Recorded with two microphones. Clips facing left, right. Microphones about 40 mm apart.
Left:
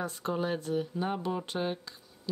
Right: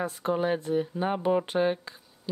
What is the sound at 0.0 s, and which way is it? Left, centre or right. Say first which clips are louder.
Speech: right 5 dB; centre.